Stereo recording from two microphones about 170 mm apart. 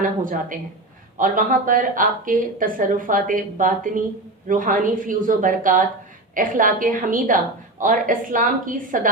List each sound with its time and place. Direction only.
0.0 s a woman's voice: 50° right (ahead or behind)